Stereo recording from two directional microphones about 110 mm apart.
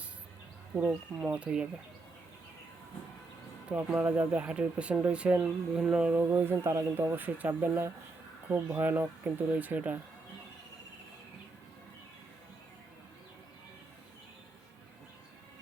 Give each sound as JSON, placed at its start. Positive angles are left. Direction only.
{"t": 0.8, "sound": "speech", "side_deg": -15}
{"t": 3.7, "sound": "speech", "side_deg": -10}